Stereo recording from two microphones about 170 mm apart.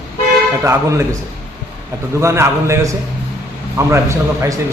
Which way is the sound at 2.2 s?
15° right (ahead or behind).